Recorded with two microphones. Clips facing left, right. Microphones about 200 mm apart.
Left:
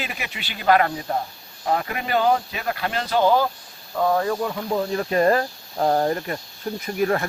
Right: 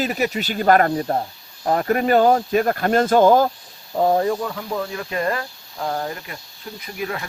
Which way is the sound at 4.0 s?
30° right (ahead or behind).